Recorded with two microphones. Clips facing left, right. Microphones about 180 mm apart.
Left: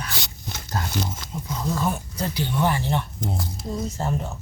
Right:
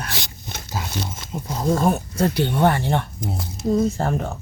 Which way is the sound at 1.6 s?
50° right (ahead or behind).